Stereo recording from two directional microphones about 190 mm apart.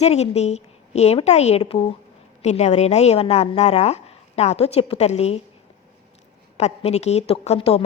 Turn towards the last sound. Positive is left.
turn(degrees=30)  # may be behind; listen again after turning